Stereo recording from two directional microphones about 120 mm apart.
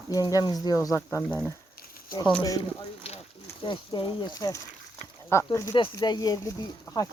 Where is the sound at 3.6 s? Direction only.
45° left (ahead or behind).